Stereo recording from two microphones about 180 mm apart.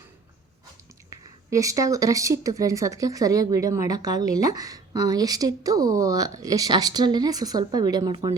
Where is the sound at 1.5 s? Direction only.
20° right (ahead or behind).